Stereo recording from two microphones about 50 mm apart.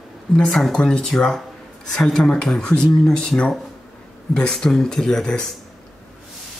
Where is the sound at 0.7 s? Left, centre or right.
Centre.